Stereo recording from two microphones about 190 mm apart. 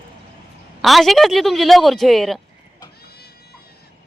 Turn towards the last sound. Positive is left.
turn(degrees=55)  # may be behind; listen again after turning